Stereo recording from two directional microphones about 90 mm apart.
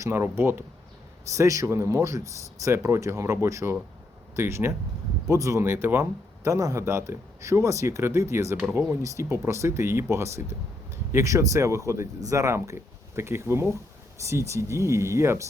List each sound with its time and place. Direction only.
0.0 s speech: 25° right (ahead or behind)
1.4 s speech: 35° right (ahead or behind)